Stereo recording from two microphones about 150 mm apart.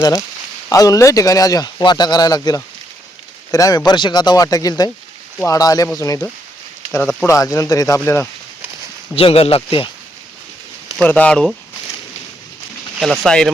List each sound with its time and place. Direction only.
0.0 s speech: 25° left (ahead or behind)
7.3 s speech: 20° left (ahead or behind)
9.1 s speech: 40° left (ahead or behind)
11.0 s speech: 10° left (ahead or behind)
13.0 s speech: 5° left (ahead or behind)